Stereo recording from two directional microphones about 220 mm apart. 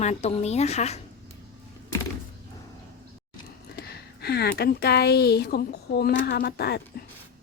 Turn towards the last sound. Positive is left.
turn(degrees=45)  # may be behind; listen again after turning